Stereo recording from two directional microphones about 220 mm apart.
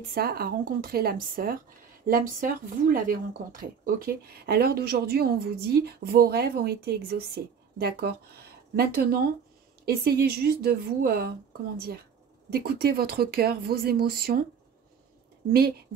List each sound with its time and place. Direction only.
0.1 s speech: 45° right (ahead or behind)
12.4 s speech: 45° right (ahead or behind)